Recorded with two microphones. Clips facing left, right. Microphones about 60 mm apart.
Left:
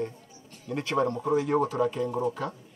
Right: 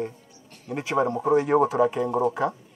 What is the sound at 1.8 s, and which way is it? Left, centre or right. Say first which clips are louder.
Speech: right 5 dB; right.